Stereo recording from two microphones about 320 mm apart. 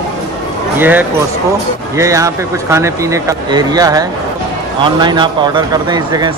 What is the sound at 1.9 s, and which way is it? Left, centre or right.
Speech, centre.